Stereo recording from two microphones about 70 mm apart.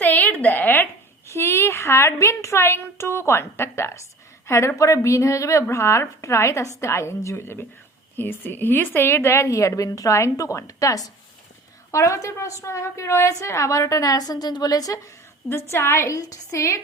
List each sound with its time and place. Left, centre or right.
0.0 s a sound: left
1.3 s a woman's voice: left
15.4 s a woman's voice: left
16.1 s a woman's voice: left